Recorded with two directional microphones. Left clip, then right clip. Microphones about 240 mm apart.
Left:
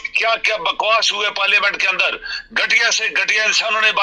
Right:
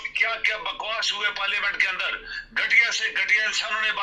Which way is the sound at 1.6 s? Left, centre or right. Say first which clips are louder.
Left 8 dB; left.